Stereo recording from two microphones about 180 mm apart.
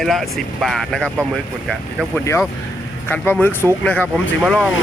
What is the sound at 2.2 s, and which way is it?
Speech, 15° left (ahead or behind).